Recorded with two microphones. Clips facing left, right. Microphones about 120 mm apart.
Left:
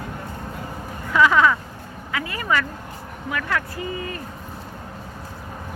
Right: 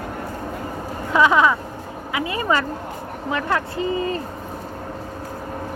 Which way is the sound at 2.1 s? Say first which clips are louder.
Right 3 dB; 20° right (ahead or behind).